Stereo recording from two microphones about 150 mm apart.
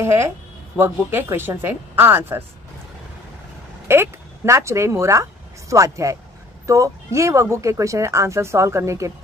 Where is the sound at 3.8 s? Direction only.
15° right (ahead or behind).